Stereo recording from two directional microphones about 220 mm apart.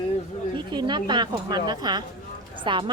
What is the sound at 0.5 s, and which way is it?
A woman's voice, 20° right (ahead or behind).